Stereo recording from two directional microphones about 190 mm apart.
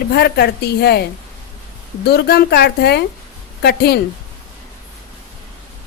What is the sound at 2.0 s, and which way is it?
A woman's voice, 55° left (ahead or behind).